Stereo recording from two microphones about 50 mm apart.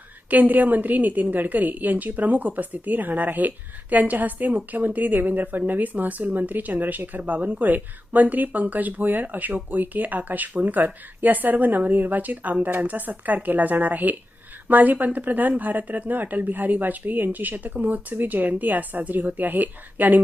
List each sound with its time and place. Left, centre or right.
0.3 s a woman's voice: right